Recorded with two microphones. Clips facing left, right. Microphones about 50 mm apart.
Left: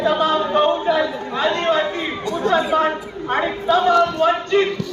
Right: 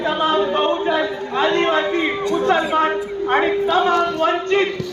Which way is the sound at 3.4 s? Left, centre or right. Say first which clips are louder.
Right 1 dB; centre.